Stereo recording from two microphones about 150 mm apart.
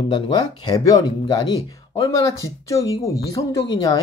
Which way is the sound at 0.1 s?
30° left (ahead or behind).